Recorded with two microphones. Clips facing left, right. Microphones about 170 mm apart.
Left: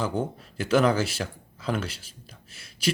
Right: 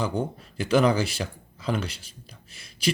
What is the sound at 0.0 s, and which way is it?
Speech, 5° left (ahead or behind).